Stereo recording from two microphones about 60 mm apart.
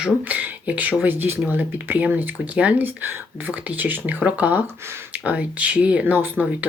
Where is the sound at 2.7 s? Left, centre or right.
Right.